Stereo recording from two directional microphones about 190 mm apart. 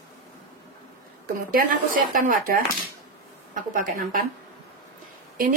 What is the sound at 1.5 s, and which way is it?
Speech, 45° right (ahead or behind).